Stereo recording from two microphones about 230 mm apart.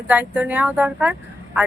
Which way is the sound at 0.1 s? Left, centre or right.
Centre.